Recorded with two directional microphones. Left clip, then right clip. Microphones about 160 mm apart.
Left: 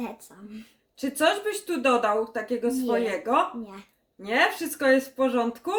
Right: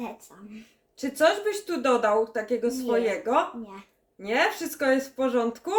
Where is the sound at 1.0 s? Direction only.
5° right (ahead or behind).